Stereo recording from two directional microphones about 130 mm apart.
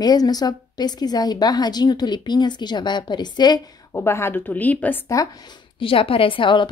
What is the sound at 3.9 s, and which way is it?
A woman's voice, 20° left (ahead or behind).